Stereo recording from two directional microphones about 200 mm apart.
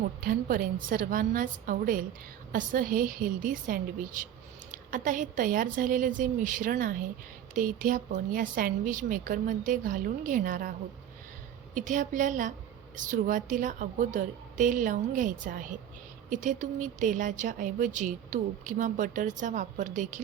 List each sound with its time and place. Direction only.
0.2 s a woman's voice: 45° right (ahead or behind)
11.7 s speech: 40° right (ahead or behind)